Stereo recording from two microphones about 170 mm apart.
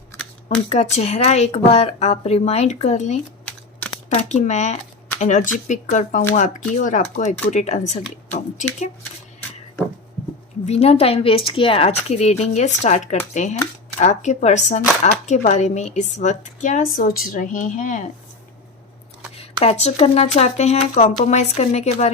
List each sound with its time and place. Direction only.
0.4 s speech: 40° left (ahead or behind)
3.4 s a sound: 5° left (ahead or behind)
4.1 s a woman's voice: 45° left (ahead or behind)
10.7 s a woman's voice: 35° left (ahead or behind)
19.4 s speech: 40° left (ahead or behind)